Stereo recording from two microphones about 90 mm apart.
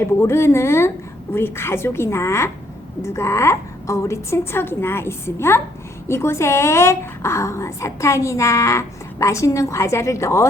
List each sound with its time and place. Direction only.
0.2 s a woman's voice: 30° left (ahead or behind)